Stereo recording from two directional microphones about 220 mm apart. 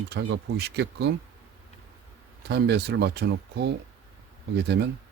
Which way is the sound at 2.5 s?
50° right (ahead or behind).